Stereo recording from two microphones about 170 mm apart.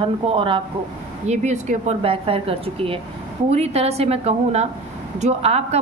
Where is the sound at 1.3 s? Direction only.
45° right (ahead or behind).